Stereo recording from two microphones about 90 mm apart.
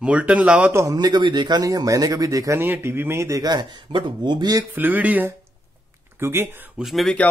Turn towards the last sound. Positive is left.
turn(degrees=0)  # may be behind; listen again after turning